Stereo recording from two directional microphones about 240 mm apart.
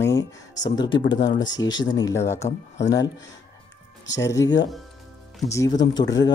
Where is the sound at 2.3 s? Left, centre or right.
Left.